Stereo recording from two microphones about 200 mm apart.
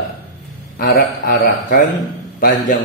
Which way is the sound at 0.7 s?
45° left (ahead or behind).